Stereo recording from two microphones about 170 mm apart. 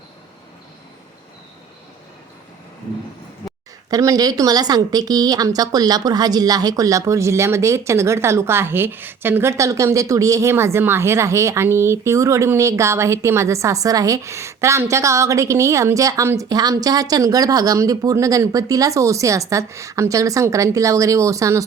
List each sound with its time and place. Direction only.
3.8 s a woman's voice: 20° right (ahead or behind)